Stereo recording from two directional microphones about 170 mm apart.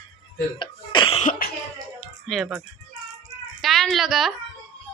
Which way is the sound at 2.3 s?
Centre (ahead or behind).